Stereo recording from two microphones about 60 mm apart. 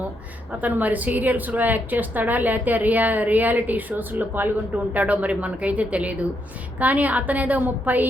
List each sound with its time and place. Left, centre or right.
0.6 s a woman's voice: right